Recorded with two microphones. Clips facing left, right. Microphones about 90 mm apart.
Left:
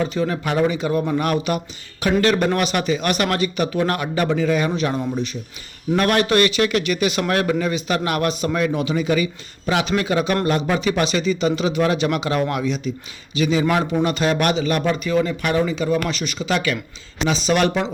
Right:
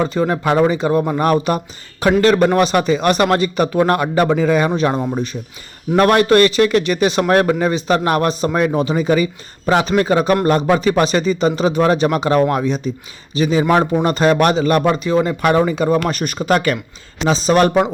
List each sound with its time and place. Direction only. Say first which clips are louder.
0.0 s speech: right 5 dB; 40° right (ahead or behind)
14.9 s speech: right 4 dB; 35° right (ahead or behind)
17.2 s speech: right 5 dB; 35° right (ahead or behind)